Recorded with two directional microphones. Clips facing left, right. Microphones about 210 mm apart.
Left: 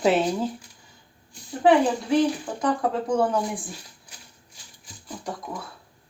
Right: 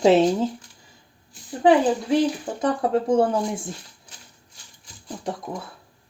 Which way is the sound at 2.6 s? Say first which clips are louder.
Right 3 dB; 25° right (ahead or behind).